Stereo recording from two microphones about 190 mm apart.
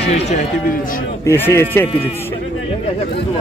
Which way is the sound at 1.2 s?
15° left (ahead or behind).